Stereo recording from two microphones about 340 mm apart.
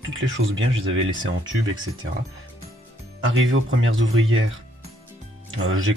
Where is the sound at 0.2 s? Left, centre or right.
Right.